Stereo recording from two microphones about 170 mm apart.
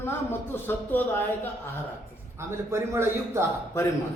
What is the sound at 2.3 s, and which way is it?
A man's voice, 15° right (ahead or behind).